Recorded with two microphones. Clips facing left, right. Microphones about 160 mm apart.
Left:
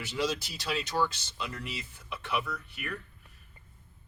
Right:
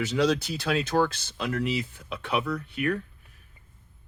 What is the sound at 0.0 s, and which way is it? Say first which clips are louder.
Speech: right 8 dB; 70° right (ahead or behind).